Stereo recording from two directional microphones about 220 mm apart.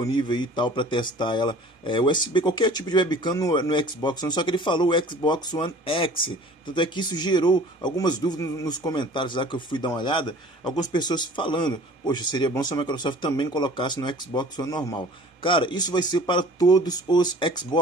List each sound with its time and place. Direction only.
0.1 s speech: 20° left (ahead or behind)